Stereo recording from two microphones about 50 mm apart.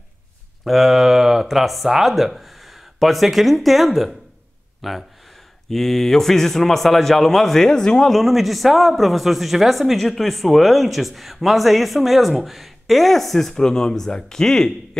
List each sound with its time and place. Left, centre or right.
0.7 s a man's voice: centre
8.1 s speech: centre